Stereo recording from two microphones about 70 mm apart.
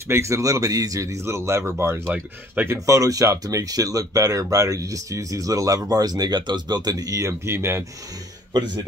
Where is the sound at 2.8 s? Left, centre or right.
Right.